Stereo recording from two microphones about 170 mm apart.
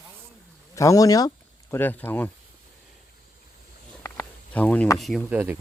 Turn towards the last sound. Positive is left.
turn(degrees=-10)  # may be behind; listen again after turning